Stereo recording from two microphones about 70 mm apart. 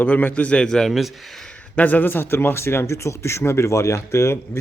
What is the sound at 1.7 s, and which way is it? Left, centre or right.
Speech, left.